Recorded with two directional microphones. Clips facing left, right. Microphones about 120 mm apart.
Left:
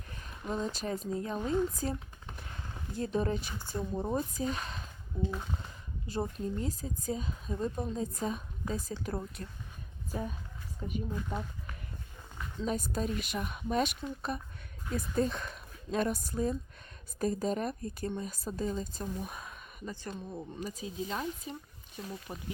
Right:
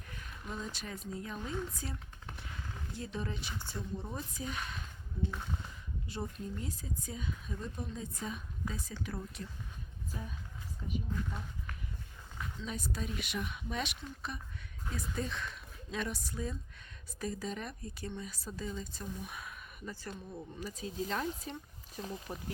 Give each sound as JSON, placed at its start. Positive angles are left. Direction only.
{"t": 0.1, "sound": "speech", "side_deg": 35}
{"t": 1.7, "sound": "a sound", "side_deg": 45}
{"t": 3.0, "sound": "speech", "side_deg": 45}
{"t": 6.1, "sound": "a woman's voice", "side_deg": 40}
{"t": 10.1, "sound": "speech", "side_deg": 65}
{"t": 12.6, "sound": "speech", "side_deg": 45}
{"t": 19.8, "sound": "speech", "side_deg": 20}
{"t": 20.9, "sound": "speech", "side_deg": 5}